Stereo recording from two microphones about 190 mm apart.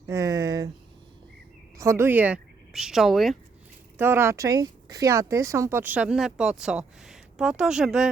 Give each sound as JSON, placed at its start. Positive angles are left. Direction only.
{"t": 0.1, "sound": "a sound", "side_deg": -15}
{"t": 1.8, "sound": "speech", "side_deg": -15}
{"t": 3.9, "sound": "speech", "side_deg": -10}